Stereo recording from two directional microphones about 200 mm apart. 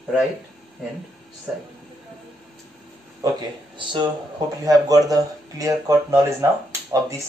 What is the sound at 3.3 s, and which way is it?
Speech, 25° right (ahead or behind).